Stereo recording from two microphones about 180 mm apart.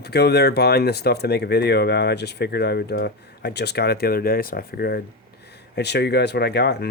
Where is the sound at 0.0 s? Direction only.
65° left (ahead or behind).